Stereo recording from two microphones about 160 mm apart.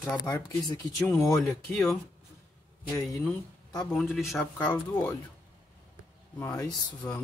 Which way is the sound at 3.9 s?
Centre (ahead or behind).